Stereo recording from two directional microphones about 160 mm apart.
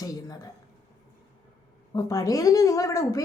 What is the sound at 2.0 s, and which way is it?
A woman's voice, 20° left (ahead or behind).